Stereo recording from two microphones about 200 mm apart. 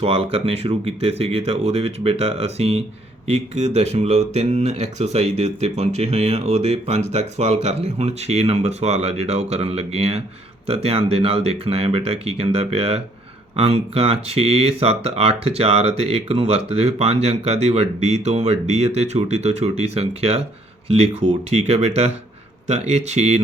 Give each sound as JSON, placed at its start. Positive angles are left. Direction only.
{"t": 0.0, "sound": "speech", "side_deg": -30}